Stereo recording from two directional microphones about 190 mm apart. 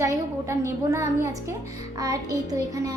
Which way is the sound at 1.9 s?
20° right (ahead or behind).